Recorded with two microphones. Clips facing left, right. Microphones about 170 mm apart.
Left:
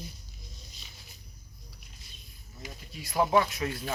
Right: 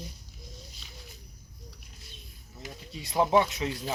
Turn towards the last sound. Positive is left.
turn(degrees=-20)  # may be behind; listen again after turning